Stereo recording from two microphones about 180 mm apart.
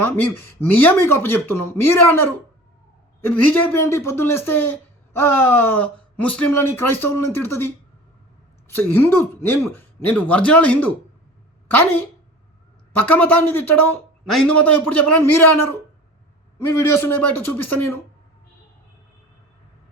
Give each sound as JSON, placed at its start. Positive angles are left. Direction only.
{"t": 0.0, "sound": "speech", "side_deg": 10}
{"t": 13.1, "sound": "speech", "side_deg": 10}